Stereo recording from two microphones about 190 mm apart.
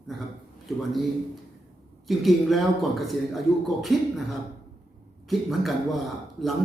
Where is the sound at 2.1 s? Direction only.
Centre (ahead or behind).